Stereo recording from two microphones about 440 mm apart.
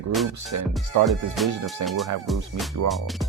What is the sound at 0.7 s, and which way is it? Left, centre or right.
Speech, centre.